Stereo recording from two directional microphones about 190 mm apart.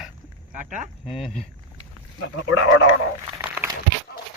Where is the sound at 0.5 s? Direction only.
40° right (ahead or behind).